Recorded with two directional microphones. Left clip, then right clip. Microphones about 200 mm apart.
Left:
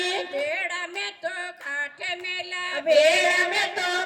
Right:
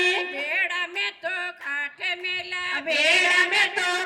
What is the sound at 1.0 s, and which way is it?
Music, 65° left (ahead or behind).